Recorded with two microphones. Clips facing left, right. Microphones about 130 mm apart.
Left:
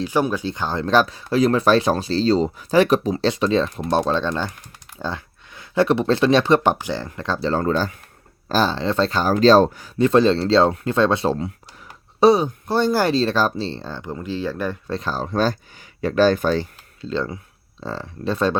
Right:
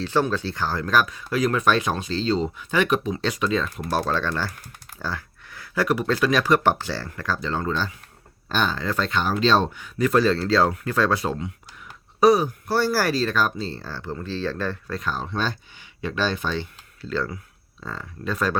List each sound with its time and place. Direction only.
0.0 s speech: 15° left (ahead or behind); by 3.8 s 30° left (ahead or behind)
3.8 s speech: 20° left (ahead or behind); by 7.9 s 45° left (ahead or behind)
8.4 s speech: 35° left (ahead or behind); by 14.8 s 15° left (ahead or behind)
14.8 s speech: 30° left (ahead or behind); by 16.6 s 45° left (ahead or behind)
17.0 s speech: 25° left (ahead or behind)